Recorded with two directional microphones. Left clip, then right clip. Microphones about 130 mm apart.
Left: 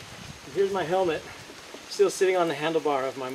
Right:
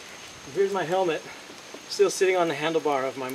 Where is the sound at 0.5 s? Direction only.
5° right (ahead or behind).